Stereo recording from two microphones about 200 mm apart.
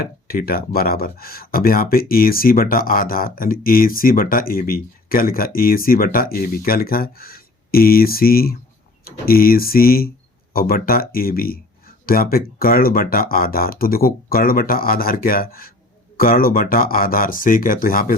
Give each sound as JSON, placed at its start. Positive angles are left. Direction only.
{"t": 0.0, "sound": "speech", "side_deg": 45}